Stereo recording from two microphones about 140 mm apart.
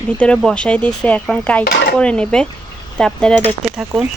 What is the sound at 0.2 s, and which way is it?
Speech, 5° left (ahead or behind).